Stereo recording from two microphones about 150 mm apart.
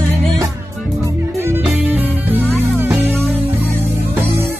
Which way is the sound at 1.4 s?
15° right (ahead or behind).